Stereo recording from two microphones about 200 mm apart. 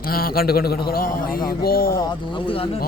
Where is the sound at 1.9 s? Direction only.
20° left (ahead or behind).